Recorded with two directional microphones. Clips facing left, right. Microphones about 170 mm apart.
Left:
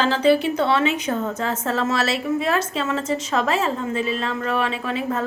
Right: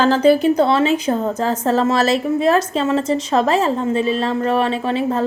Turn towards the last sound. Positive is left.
turn(degrees=-30)  # may be behind; listen again after turning